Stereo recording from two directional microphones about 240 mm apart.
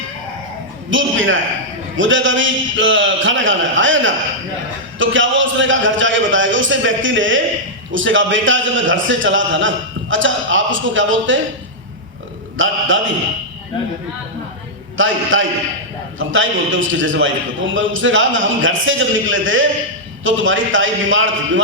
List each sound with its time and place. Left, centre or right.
0.9 s a man's voice: right
12.5 s a man's voice: right
14.9 s a man's voice: right